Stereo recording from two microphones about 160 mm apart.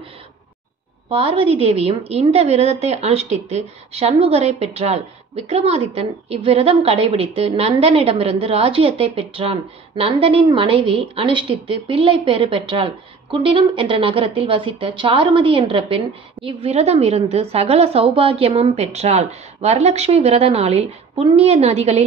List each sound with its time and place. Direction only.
1.1 s a woman's voice: 35° right (ahead or behind)